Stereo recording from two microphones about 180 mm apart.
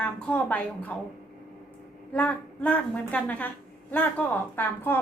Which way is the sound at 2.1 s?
10° left (ahead or behind).